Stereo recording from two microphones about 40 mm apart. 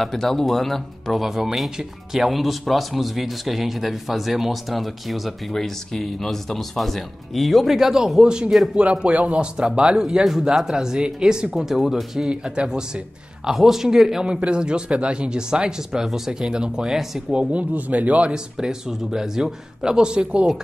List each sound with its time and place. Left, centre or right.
0.0 s speech: centre
1.2 s speech: centre
5.6 s speech: centre; by 9.5 s right
9.6 s a man's voice: right
11.5 s a man's voice: centre
12.3 s speech: right
13.5 s a man's voice: centre
14.4 s speech: right
17.5 s speech: right
18.3 s a man's voice: centre